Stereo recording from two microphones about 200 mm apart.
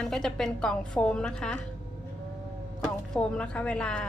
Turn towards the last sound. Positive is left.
turn(degrees=5)  # may be behind; listen again after turning